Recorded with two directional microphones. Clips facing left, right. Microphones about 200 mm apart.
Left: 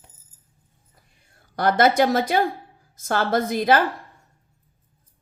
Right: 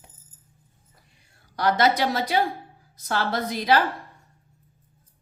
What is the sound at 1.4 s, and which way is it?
Speech, 50° left (ahead or behind).